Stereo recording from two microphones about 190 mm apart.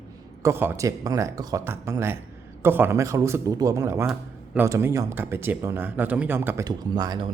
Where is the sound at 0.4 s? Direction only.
10° right (ahead or behind).